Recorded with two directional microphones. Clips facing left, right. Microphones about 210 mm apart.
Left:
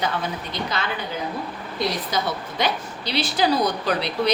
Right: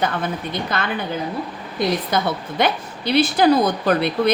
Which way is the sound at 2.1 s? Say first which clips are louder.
Right 4 dB; 55° right (ahead or behind).